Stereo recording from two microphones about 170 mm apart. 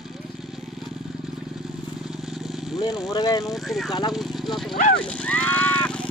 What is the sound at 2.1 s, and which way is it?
Vehicle, centre (ahead or behind).